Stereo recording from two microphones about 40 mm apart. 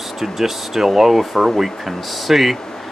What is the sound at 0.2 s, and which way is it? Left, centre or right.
Speech, centre.